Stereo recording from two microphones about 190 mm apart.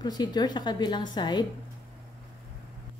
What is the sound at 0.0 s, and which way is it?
A woman's voice, 20° left (ahead or behind).